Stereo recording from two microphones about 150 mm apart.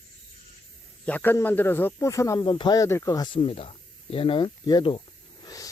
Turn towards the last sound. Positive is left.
turn(degrees=25)  # may be behind; listen again after turning